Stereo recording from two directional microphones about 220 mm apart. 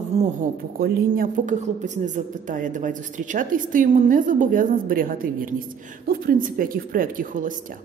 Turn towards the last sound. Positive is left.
turn(degrees=-40)  # may be behind; listen again after turning